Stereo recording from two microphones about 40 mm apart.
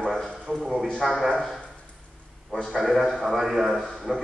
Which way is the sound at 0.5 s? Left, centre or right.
Right.